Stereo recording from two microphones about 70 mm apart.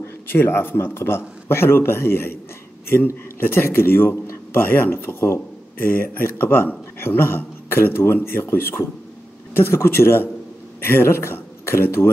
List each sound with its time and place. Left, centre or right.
0.0 s a man's voice: left